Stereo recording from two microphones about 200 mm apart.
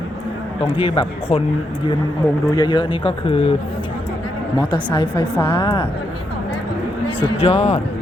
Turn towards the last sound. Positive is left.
turn(degrees=35)  # may be behind; listen again after turning